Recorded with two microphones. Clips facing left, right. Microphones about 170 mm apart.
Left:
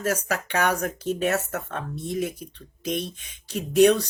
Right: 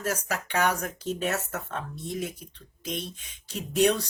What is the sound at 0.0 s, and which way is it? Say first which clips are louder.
Speech: left 4 dB; 60° left (ahead or behind).